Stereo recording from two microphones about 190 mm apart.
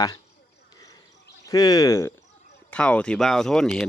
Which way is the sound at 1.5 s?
20° left (ahead or behind).